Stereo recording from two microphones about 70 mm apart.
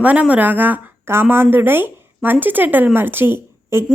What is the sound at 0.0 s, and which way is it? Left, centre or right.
Speech, right.